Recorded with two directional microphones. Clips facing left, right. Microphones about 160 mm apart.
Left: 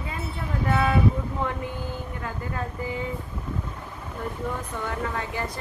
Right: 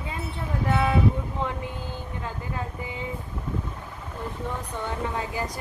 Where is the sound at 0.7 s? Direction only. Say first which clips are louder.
Left 1 dB; 20° right (ahead or behind).